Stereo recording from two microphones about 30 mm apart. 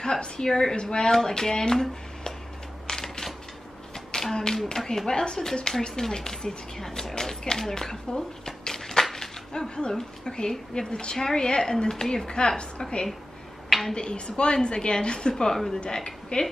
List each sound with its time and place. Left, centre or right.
0.4 s speech: left
2.9 s typewriter: centre
3.9 s a sound: centre
4.7 s speech: centre
7.7 s a sound: centre
9.0 s speech: centre
11.9 s speech: centre
13.7 s a sound: centre
13.9 s a woman's voice: left